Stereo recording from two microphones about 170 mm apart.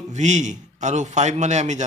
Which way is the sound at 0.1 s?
45° right (ahead or behind).